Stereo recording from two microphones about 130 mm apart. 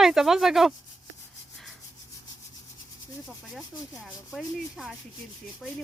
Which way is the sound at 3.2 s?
Centre (ahead or behind).